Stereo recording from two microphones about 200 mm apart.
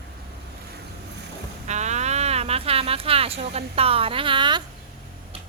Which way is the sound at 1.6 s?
35° right (ahead or behind).